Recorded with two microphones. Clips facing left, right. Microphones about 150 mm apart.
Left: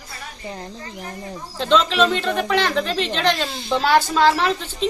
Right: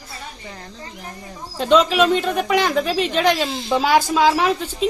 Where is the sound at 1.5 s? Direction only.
10° right (ahead or behind).